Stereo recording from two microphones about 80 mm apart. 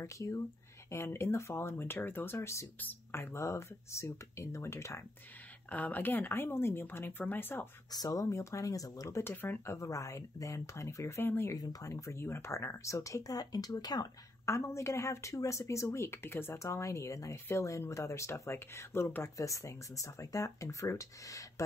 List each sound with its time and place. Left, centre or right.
0.0 s speech: left
2.8 s speech: left
3.2 s speech: left
5.7 s speech: centre
7.9 s speech: left
8.3 s speech: left
9.2 s speech: left
9.8 s speech: left
11.5 s speech: left
14.4 s speech: left
16.6 s speech: left
19.3 s speech: left